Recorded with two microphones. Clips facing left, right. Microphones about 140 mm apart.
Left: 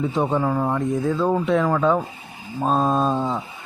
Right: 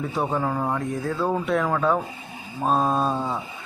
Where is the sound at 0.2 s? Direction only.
Centre (ahead or behind).